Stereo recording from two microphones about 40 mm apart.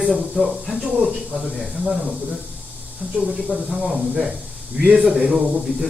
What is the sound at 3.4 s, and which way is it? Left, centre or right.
Speech, centre.